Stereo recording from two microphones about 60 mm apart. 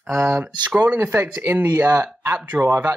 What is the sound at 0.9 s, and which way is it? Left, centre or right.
Speech, right.